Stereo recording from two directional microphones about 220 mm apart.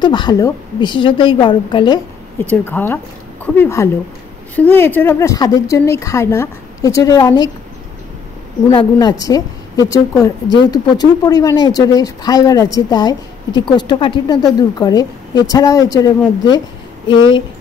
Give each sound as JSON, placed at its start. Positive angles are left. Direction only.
{"t": 0.0, "sound": "a woman's voice", "side_deg": 20}
{"t": 2.4, "sound": "speech", "side_deg": 10}
{"t": 8.6, "sound": "a woman's voice", "side_deg": 15}